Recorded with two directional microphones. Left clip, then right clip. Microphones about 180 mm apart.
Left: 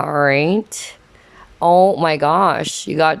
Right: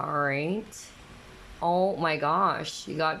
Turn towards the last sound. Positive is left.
turn(degrees=40)  # may be behind; listen again after turning